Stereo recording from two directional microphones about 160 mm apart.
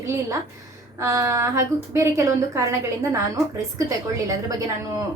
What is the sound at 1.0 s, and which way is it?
A woman's voice, 20° right (ahead or behind).